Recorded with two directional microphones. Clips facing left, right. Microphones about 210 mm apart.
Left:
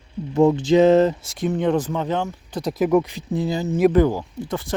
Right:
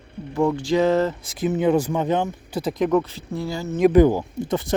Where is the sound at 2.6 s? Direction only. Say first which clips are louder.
Left 2 dB; centre (ahead or behind); by 3.7 s 20° left (ahead or behind).